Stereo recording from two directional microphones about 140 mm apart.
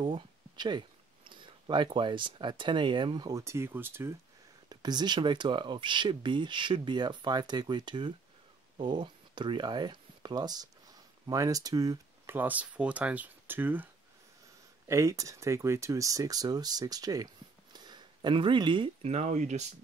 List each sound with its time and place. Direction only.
0.0 s speech: 35° right (ahead or behind); by 4.1 s 15° right (ahead or behind)
4.6 s speech: 30° right (ahead or behind)
12.4 s speech: 10° right (ahead or behind)
14.9 s speech: 20° right (ahead or behind)
17.7 s a sound: 30° right (ahead or behind)
19.0 s speech: 55° right (ahead or behind)